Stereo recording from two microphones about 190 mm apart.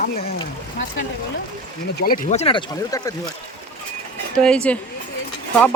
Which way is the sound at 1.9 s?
50° left (ahead or behind).